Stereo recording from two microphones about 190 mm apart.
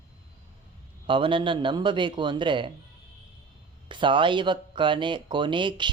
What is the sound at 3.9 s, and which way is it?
Speech, 25° right (ahead or behind).